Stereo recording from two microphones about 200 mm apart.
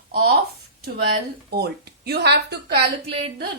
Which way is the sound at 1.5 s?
55° right (ahead or behind).